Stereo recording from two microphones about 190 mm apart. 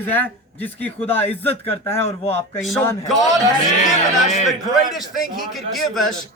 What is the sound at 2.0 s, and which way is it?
Speech, 30° left (ahead or behind).